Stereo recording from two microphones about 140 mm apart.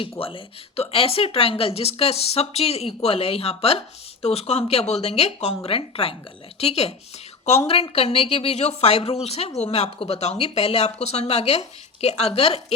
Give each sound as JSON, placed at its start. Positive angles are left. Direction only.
{"t": 0.0, "sound": "speech", "side_deg": 40}